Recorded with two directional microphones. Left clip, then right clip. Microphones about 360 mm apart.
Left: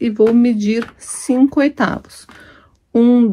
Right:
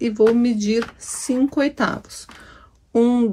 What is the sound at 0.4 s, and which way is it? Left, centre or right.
Speech, centre.